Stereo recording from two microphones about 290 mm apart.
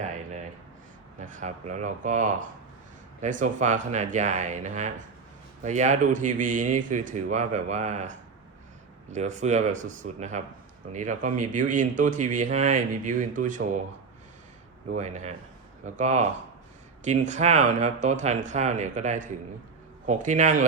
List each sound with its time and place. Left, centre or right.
1.2 s speech: right
14.8 s speech: right